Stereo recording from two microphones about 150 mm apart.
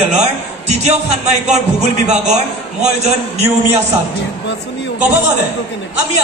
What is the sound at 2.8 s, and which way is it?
Speech, 45° right (ahead or behind).